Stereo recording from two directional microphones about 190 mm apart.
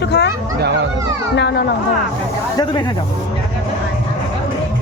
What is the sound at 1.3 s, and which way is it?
Speech, 65° left (ahead or behind).